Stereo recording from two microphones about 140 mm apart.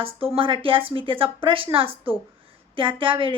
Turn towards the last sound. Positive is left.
turn(degrees=-40)  # may be behind; listen again after turning